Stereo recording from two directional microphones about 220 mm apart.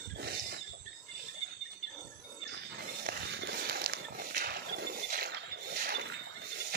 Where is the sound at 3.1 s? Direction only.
50° right (ahead or behind).